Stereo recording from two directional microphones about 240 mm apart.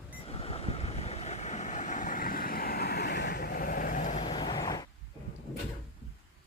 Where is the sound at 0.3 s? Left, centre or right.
Left.